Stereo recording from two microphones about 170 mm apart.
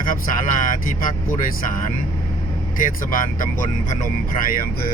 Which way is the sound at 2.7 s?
50° left (ahead or behind).